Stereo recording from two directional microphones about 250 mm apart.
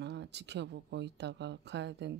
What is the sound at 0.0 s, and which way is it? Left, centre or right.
Speech, right.